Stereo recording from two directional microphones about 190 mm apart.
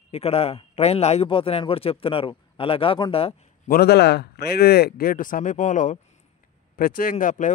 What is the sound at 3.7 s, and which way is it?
A man's voice, 60° left (ahead or behind).